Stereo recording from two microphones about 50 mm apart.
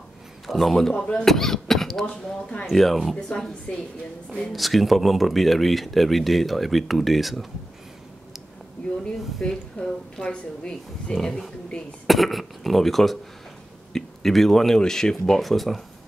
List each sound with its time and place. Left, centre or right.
0.5 s speech: centre
3.2 s speech: centre
4.4 s speech: centre
9.4 s speech: centre
11.1 s speech: centre